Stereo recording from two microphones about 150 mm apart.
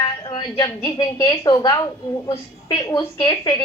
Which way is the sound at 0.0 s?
30° left (ahead or behind).